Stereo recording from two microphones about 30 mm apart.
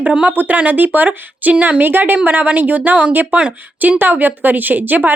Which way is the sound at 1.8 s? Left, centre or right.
Right.